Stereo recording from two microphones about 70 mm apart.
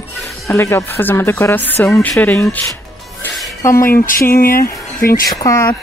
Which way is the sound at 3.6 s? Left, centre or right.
Left.